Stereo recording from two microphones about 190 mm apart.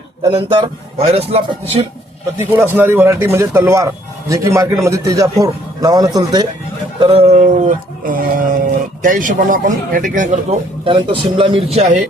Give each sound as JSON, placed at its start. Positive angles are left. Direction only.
{"t": 0.3, "sound": "speech", "side_deg": -25}
{"t": 2.4, "sound": "a man's voice", "side_deg": -10}
{"t": 7.0, "sound": "speech", "side_deg": -30}
{"t": 10.8, "sound": "a man's voice", "side_deg": -25}